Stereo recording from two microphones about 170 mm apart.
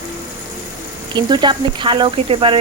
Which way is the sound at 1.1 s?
25° right (ahead or behind).